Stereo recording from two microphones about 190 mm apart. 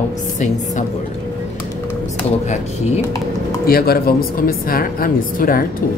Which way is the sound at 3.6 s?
55° left (ahead or behind).